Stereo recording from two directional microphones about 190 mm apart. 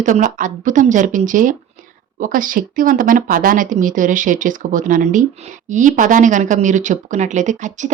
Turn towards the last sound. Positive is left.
turn(degrees=-40)  # may be behind; listen again after turning